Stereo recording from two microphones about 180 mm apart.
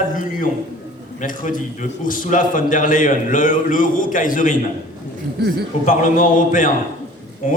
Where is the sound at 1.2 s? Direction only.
45° left (ahead or behind).